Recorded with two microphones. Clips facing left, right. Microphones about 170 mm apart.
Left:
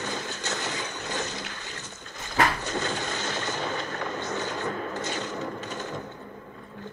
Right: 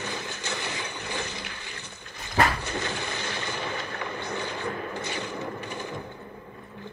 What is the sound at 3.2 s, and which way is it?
Mechanisms, 45° left (ahead or behind).